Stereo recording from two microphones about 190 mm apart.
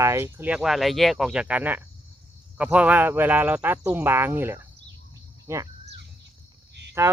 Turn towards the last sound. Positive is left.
turn(degrees=-15)  # may be behind; listen again after turning